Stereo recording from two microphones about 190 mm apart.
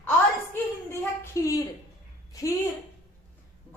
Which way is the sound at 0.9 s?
15° left (ahead or behind).